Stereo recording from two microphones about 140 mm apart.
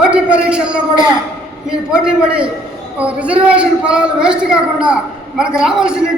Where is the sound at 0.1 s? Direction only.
10° right (ahead or behind).